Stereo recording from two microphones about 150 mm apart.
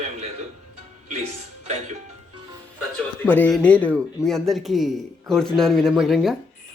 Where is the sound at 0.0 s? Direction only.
45° right (ahead or behind).